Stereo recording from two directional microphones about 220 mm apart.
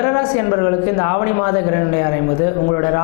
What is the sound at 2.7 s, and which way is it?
Speech, 20° left (ahead or behind).